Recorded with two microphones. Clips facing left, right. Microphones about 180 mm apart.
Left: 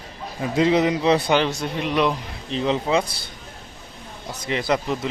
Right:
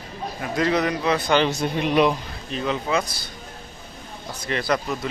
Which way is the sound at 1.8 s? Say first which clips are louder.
Right 2 dB; 15° right (ahead or behind).